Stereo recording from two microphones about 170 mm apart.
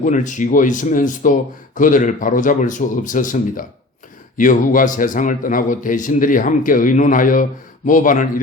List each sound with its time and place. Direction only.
0.0 s speech: 45° left (ahead or behind)